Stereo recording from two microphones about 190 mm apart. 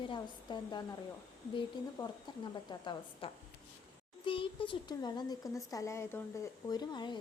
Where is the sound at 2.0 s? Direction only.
20° left (ahead or behind).